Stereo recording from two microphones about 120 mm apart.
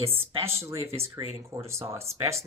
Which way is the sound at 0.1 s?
20° right (ahead or behind).